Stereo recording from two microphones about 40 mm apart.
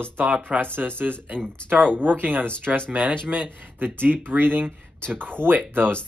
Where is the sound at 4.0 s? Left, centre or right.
Right.